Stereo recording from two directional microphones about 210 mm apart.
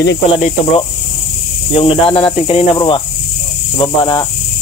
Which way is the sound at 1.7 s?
25° left (ahead or behind).